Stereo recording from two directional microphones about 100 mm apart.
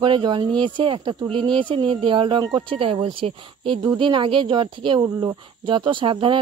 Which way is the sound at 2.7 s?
65° right (ahead or behind).